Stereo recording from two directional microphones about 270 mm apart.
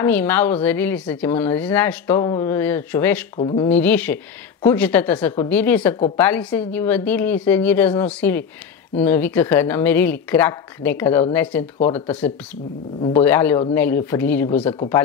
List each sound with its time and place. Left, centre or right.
0.0 s speech: centre
3.3 s speech: centre
3.6 s speech: centre